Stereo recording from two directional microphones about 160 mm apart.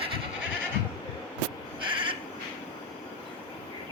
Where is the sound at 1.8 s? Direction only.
30° right (ahead or behind).